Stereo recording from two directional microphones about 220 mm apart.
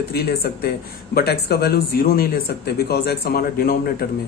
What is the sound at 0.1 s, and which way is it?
A man's voice, 45° left (ahead or behind).